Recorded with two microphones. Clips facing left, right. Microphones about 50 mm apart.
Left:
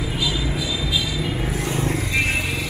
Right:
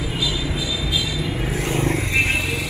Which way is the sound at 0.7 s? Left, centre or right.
Centre.